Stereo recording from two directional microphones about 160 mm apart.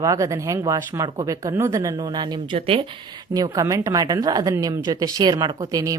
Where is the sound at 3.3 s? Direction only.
20° right (ahead or behind).